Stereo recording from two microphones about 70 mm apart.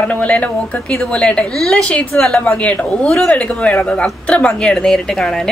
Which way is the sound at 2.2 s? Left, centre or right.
Centre.